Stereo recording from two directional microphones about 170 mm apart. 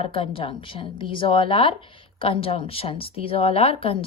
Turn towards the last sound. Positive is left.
turn(degrees=35)  # may be behind; listen again after turning